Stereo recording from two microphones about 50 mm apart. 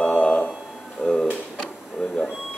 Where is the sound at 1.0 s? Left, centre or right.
Left.